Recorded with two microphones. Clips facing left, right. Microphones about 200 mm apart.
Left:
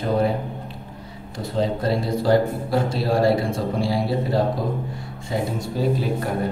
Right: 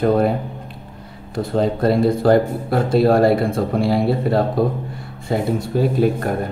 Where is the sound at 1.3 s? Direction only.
55° right (ahead or behind).